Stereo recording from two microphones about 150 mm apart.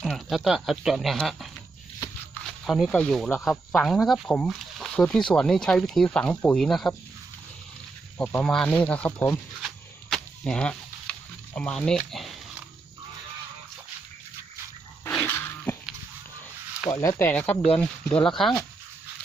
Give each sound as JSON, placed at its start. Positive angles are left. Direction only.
{"t": 0.0, "sound": "speech", "side_deg": 0}
{"t": 2.3, "sound": "snake", "side_deg": 0}
{"t": 3.4, "sound": "speech", "side_deg": 5}
{"t": 8.2, "sound": "speech", "side_deg": 5}
{"t": 9.6, "sound": "a sound", "side_deg": 5}
{"t": 11.5, "sound": "speech", "side_deg": 5}
{"t": 15.0, "sound": "a sound", "side_deg": 15}
{"t": 16.9, "sound": "speech", "side_deg": 20}